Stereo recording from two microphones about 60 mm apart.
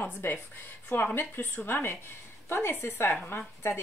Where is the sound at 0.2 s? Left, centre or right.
Left.